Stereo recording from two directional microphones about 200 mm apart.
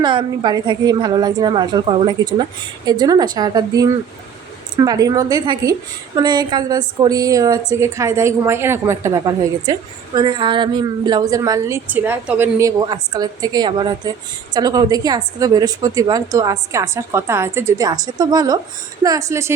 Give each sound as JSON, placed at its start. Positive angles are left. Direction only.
{"t": 0.0, "sound": "a woman's voice", "side_deg": -25}